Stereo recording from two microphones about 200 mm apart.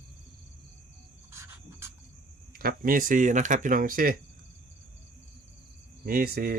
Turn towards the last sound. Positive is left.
turn(degrees=-50)  # may be behind; listen again after turning